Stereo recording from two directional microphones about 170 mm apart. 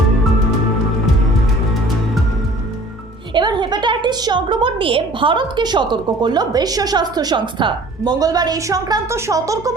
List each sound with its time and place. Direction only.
3.3 s a woman's voice: 25° right (ahead or behind)